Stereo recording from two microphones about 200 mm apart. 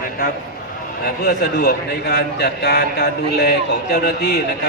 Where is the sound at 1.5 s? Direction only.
55° left (ahead or behind).